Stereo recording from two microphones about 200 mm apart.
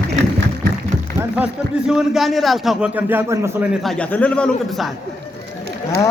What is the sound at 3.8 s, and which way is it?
Speech, 5° left (ahead or behind).